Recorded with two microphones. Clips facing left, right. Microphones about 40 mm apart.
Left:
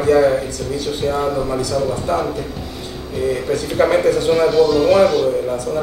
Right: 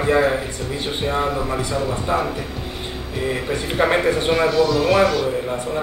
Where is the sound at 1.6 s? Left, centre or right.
Right.